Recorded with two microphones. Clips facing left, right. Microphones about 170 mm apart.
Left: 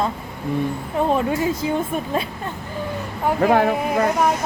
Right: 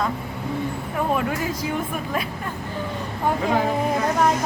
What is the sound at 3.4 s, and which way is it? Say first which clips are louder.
Speech: left 8 dB; 60° left (ahead or behind).